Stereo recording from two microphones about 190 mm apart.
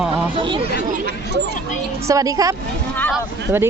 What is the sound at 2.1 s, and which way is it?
Speech, 20° right (ahead or behind).